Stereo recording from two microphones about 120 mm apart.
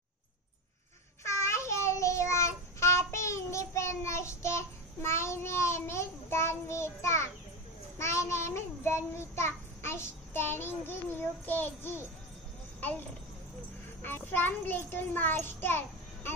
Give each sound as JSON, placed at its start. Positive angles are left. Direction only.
{"t": 1.2, "sound": "child singing", "side_deg": 25}
{"t": 14.0, "sound": "a child's voice", "side_deg": 15}